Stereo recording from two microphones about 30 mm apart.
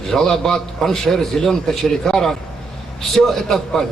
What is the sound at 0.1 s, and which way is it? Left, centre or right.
A man's voice, centre.